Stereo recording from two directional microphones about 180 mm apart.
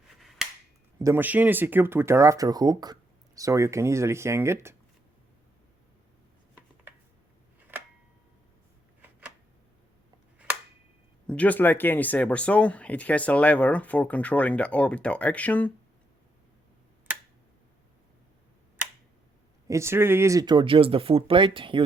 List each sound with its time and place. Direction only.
0.2 s finger snapping: centre (ahead or behind)
0.9 s speech: 15° right (ahead or behind)
10.3 s finger snapping: 10° right (ahead or behind)
11.3 s speech: 10° left (ahead or behind)
19.6 s speech: 15° right (ahead or behind)